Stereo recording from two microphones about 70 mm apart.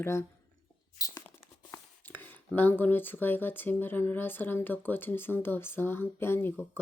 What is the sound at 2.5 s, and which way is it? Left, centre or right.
Speech, left.